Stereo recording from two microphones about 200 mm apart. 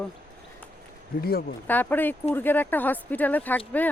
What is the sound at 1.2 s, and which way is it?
Speech, 50° left (ahead or behind).